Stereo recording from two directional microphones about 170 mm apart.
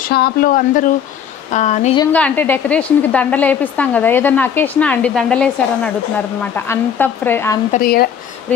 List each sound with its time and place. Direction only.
0.1 s speech: 60° left (ahead or behind); by 2.0 s 45° left (ahead or behind)
2.1 s a woman's voice: 10° left (ahead or behind)
7.7 s speech: 60° left (ahead or behind)